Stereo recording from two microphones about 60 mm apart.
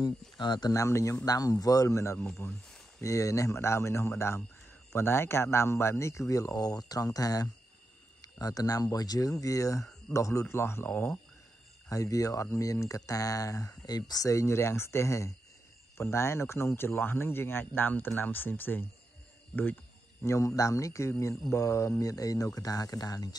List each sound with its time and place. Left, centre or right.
0.7 s speech: left
1.2 s speech: left
2.4 s speech: left
3.0 s speech: left
10.4 s speech: left
11.9 s speech: left
20.2 s speech: left